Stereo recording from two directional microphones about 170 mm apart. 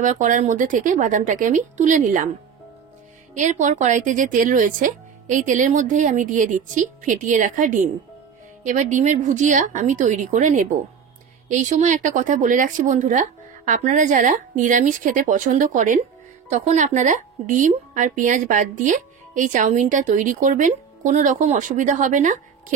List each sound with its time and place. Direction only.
0.0 s a woman's voice: 50° right (ahead or behind)
3.3 s a woman's voice: 45° right (ahead or behind)